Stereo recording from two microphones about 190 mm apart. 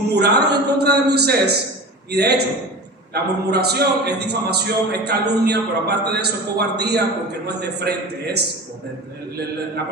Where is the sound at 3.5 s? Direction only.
60° right (ahead or behind).